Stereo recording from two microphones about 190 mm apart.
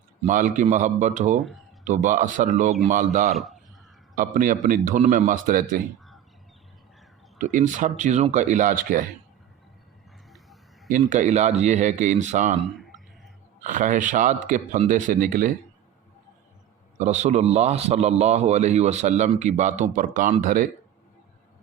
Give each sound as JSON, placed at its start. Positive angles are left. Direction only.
{"t": 0.3, "sound": "a man's voice", "side_deg": -40}
{"t": 1.4, "sound": "speech", "side_deg": 0}
{"t": 1.8, "sound": "a man's voice", "side_deg": -40}
{"t": 3.3, "sound": "speech", "side_deg": 0}
{"t": 4.2, "sound": "a man's voice", "side_deg": -45}
{"t": 7.3, "sound": "a man's voice", "side_deg": -40}
{"t": 10.8, "sound": "a man's voice", "side_deg": -40}
{"t": 12.7, "sound": "a sound", "side_deg": 0}
{"t": 13.6, "sound": "a man's voice", "side_deg": -40}
{"t": 17.0, "sound": "a man's voice", "side_deg": -40}